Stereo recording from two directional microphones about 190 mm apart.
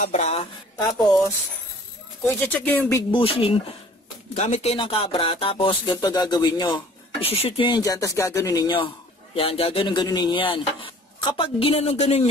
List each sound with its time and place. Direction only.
0.0 s speech: 35° left (ahead or behind)
2.2 s speech: 10° left (ahead or behind)
3.1 s speech: 25° left (ahead or behind)